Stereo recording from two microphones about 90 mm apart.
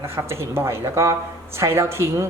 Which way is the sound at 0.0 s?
30° right (ahead or behind).